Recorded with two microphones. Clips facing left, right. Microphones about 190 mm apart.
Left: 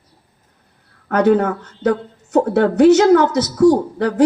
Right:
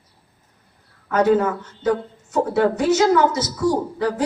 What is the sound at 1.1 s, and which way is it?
Speech, 60° left (ahead or behind).